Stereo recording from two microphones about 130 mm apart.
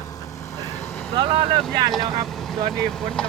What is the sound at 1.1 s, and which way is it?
Speech, 35° right (ahead or behind).